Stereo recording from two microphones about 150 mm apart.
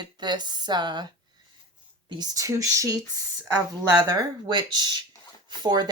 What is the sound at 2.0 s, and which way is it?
Speech, 25° right (ahead or behind).